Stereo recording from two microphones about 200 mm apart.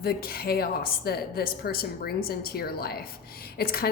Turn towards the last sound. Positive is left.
turn(degrees=50)  # may be behind; listen again after turning